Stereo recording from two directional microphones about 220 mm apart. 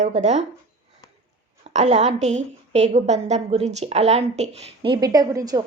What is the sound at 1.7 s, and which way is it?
A woman's voice, 30° right (ahead or behind).